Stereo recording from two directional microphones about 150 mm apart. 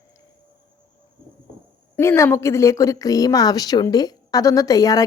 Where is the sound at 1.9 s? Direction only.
20° left (ahead or behind).